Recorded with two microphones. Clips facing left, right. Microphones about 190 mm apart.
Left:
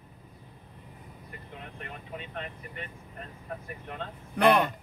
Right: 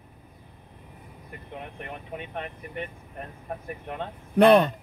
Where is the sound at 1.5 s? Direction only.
55° right (ahead or behind).